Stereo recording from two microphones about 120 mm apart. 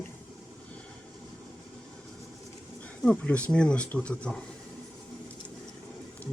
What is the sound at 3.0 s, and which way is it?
Speech, 10° left (ahead or behind).